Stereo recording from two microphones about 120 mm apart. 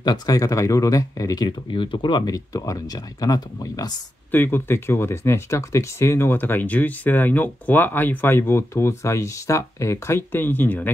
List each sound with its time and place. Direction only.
0.0 s speech: 35° left (ahead or behind)
4.3 s speech: 15° left (ahead or behind)